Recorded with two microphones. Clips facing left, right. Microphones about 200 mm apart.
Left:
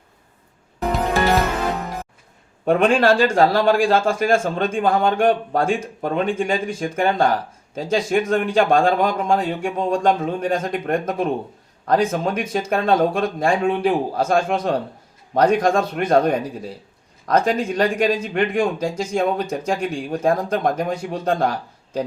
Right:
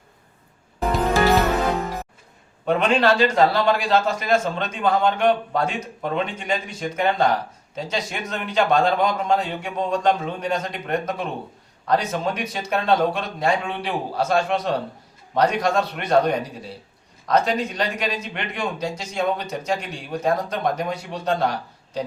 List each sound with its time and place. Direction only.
0.8 s music: centre (ahead or behind)
2.6 s a man's voice: 50° left (ahead or behind)